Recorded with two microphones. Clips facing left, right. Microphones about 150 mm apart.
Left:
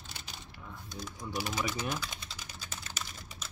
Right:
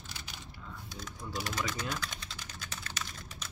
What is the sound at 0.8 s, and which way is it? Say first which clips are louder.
Typing: left 3 dB; centre (ahead or behind).